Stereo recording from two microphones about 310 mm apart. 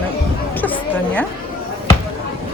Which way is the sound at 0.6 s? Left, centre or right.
Centre.